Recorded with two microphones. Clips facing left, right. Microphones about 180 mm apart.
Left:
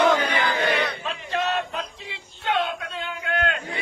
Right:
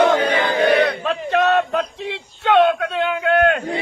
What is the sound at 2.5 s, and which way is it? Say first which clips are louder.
A man's voice: right 11 dB; 70° right (ahead or behind).